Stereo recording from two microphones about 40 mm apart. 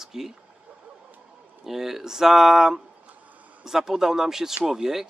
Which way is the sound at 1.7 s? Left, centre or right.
Centre.